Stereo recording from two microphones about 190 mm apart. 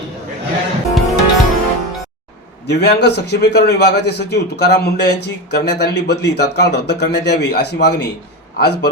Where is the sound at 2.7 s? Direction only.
60° left (ahead or behind).